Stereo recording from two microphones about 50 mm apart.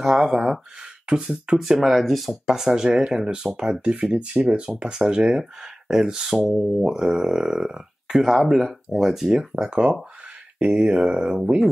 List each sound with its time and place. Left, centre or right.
0.0 s speech: centre
1.6 s speech: centre
8.2 s speech: centre
9.3 s speech: centre